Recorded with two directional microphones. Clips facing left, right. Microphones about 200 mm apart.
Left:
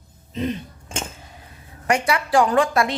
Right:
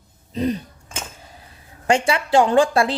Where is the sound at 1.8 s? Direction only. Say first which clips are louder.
Right 2 dB; 25° right (ahead or behind).